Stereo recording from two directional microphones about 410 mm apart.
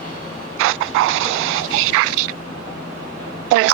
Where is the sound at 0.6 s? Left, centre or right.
Right.